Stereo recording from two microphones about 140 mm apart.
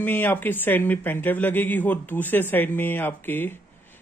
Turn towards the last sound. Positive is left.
turn(degrees=15)  # may be behind; listen again after turning